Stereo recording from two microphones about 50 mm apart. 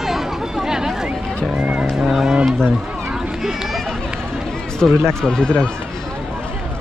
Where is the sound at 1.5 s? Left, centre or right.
Centre.